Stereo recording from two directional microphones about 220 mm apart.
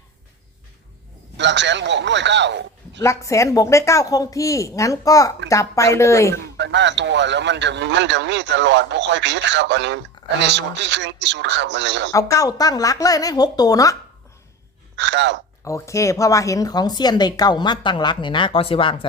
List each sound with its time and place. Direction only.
1.4 s a man's voice: 55° right (ahead or behind)
3.0 s a woman's voice: 15° left (ahead or behind)
6.3 s speech: 55° right (ahead or behind)
12.1 s a woman's voice: 15° left (ahead or behind)
14.9 s speech: 55° right (ahead or behind)
15.6 s speech: 15° left (ahead or behind)